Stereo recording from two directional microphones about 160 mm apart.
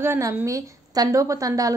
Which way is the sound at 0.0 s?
15° right (ahead or behind).